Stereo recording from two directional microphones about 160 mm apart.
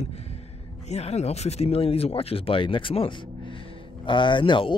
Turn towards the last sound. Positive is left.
turn(degrees=30)  # may be behind; listen again after turning